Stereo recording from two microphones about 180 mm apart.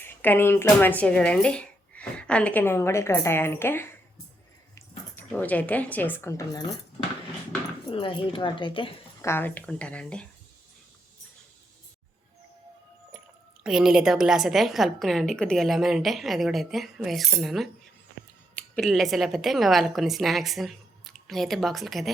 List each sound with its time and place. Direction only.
0.0 s speech: 10° left (ahead or behind)
7.9 s speech: 30° left (ahead or behind)
9.2 s speech: 10° left (ahead or behind)
13.7 s a woman's voice: 5° right (ahead or behind)